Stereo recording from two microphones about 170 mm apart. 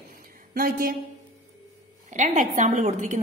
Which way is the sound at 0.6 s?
60° right (ahead or behind).